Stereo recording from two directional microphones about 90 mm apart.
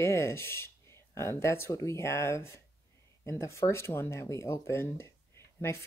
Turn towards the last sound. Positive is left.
turn(degrees=30)  # may be behind; listen again after turning